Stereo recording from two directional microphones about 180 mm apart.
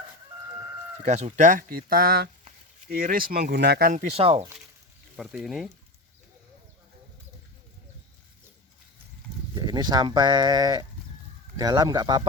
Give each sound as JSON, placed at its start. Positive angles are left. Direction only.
{"t": 1.0, "sound": "speech", "side_deg": -40}
{"t": 4.2, "sound": "speech", "side_deg": -30}
{"t": 5.1, "sound": "speech", "side_deg": -5}
{"t": 9.6, "sound": "speech", "side_deg": -20}